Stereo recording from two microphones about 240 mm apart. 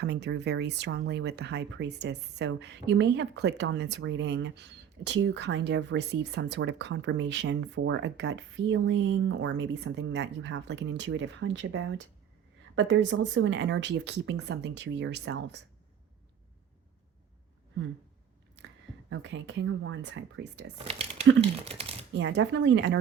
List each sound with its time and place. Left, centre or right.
0.0 s speech: right
19.1 s speech: right
20.8 s speech: right
22.2 s speech: right